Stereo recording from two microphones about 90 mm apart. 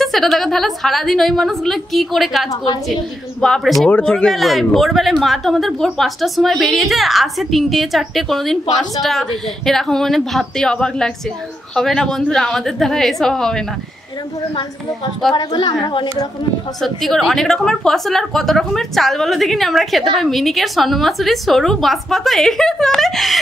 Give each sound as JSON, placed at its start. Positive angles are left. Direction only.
{"t": 0.0, "sound": "speech", "side_deg": 0}
{"t": 9.7, "sound": "speech", "side_deg": 5}
{"t": 15.3, "sound": "a woman's voice", "side_deg": 55}
{"t": 16.8, "sound": "speech", "side_deg": 0}